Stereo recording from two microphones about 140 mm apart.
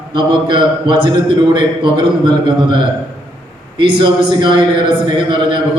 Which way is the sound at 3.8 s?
35° right (ahead or behind).